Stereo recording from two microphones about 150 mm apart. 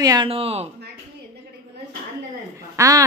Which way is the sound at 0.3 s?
40° right (ahead or behind).